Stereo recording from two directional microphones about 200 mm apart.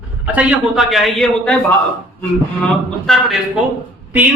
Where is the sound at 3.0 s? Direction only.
5° left (ahead or behind).